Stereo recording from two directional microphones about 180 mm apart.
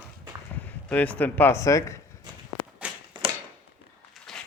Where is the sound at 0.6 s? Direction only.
10° left (ahead or behind).